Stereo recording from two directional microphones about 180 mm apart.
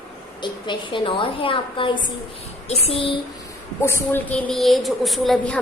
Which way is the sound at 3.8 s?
15° left (ahead or behind).